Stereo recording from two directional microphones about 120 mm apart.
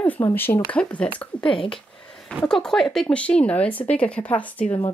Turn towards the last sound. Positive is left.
turn(degrees=10)  # may be behind; listen again after turning